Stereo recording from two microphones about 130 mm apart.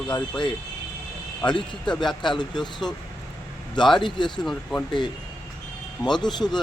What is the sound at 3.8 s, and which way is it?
Speech, 35° left (ahead or behind).